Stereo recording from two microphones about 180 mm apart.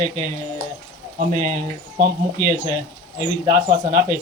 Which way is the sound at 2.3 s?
15° left (ahead or behind).